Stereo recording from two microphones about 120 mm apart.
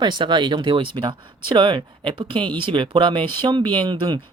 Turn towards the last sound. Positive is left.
turn(degrees=-40)  # may be behind; listen again after turning